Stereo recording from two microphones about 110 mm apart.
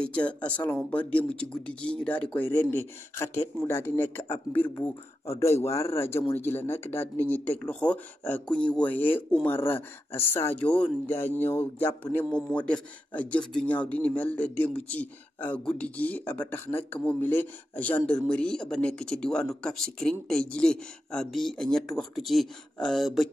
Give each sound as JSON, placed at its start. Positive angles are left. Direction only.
{"t": 0.0, "sound": "speech", "side_deg": 10}